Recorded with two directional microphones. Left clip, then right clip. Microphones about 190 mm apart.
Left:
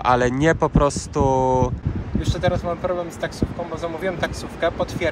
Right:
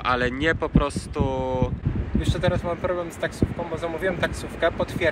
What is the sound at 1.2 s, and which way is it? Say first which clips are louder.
Speech: left 8 dB; 90° right.